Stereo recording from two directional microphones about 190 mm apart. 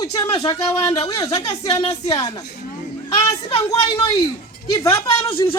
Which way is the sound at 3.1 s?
25° left (ahead or behind).